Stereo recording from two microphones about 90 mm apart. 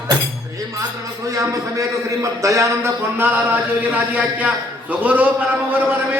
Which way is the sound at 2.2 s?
35° right (ahead or behind).